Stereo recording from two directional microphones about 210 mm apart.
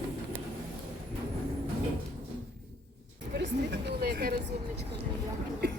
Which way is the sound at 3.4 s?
55° right (ahead or behind).